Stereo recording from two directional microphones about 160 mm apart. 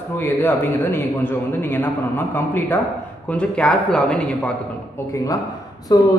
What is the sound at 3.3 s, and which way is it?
Speech, 5° left (ahead or behind).